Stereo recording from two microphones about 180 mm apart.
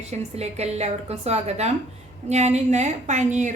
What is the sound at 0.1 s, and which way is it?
A woman's voice, 35° right (ahead or behind).